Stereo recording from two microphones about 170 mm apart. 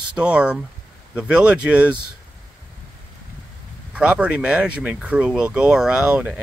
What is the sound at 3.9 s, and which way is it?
Speech, 5° right (ahead or behind).